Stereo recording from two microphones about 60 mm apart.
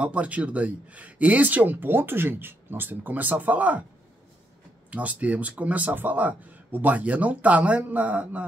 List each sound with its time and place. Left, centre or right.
0.0 s a man's voice: right
4.9 s a man's voice: right